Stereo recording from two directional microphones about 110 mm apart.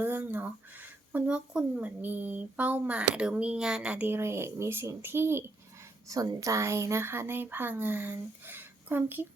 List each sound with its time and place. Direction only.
0.0 s speech: 20° right (ahead or behind)
6.1 s speech: 35° right (ahead or behind)